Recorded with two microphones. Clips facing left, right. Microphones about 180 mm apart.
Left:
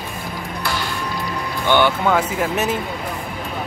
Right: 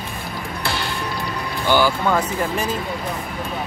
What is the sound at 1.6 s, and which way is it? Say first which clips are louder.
Speech: left 1 dB; 5° right (ahead or behind).